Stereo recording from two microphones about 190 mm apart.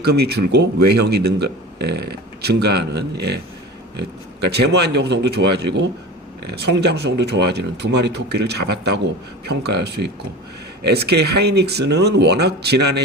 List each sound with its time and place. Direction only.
0.0 s speech: 60° right (ahead or behind)